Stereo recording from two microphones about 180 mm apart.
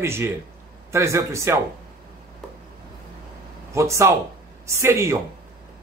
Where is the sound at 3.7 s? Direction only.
15° right (ahead or behind).